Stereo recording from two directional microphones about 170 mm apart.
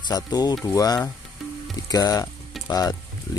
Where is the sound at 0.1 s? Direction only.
20° left (ahead or behind).